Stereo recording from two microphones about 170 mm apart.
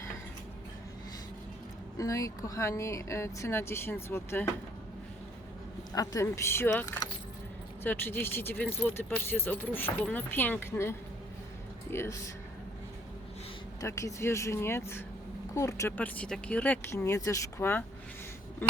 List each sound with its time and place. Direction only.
2.0 s speech: 20° left (ahead or behind)
5.9 s speech: 20° left (ahead or behind)
13.8 s speech: 15° left (ahead or behind)